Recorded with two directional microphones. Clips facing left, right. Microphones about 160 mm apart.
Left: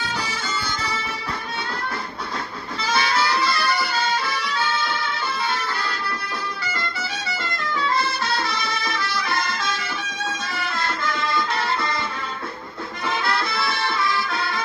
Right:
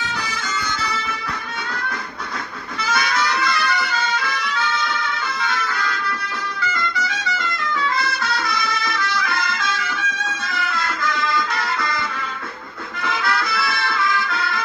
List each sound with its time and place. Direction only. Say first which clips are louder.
2.8 s harmonica: even; 30° left (ahead or behind)
6.6 s music: right 5 dB; 30° left (ahead or behind)
13.0 s music: right 1 dB; 30° left (ahead or behind)